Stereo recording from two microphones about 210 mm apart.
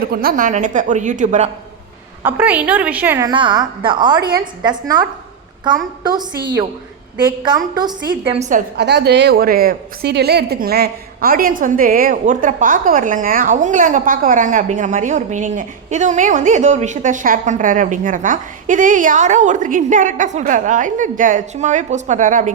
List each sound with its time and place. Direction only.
0.0 s a woman's voice: 45° right (ahead or behind)
2.2 s a woman's voice: 10° right (ahead or behind)
7.4 s a woman's voice: 20° right (ahead or behind)
8.3 s a woman's voice: 35° right (ahead or behind)